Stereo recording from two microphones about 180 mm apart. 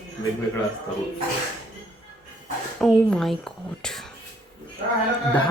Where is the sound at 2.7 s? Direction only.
5° left (ahead or behind).